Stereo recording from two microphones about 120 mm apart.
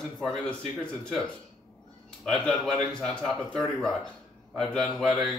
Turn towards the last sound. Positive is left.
turn(degrees=0)  # may be behind; listen again after turning